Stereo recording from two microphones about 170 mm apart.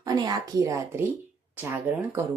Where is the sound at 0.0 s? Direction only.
25° right (ahead or behind).